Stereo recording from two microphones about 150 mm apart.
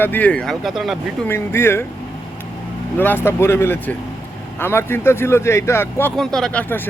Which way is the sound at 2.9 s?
15° left (ahead or behind).